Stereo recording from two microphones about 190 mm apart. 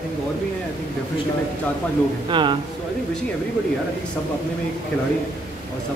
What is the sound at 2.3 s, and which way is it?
Speech, 25° right (ahead or behind).